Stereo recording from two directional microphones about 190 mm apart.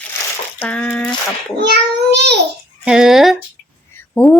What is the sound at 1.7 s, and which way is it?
Child singing, 60° right (ahead or behind).